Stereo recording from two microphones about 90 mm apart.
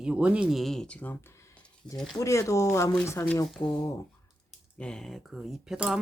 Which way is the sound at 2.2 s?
35° left (ahead or behind).